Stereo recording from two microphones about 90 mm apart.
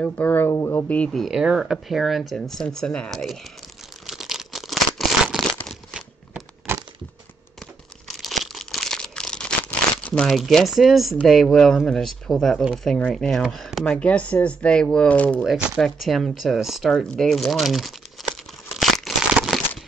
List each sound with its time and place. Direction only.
0.0 s speech: 20° left (ahead or behind)
0.6 s speech: 35° left (ahead or behind)
0.8 s speech: 15° left (ahead or behind)
1.1 s speech: 5° right (ahead or behind)
4.0 s crumpling: 5° right (ahead or behind)
6.7 s a sound: 30° right (ahead or behind)
8.1 s crumpling: centre (ahead or behind)
10.2 s speech: centre (ahead or behind)
13.9 s speech: 15° left (ahead or behind)
15.4 s speech: 5° right (ahead or behind)
18.7 s crumpling: centre (ahead or behind)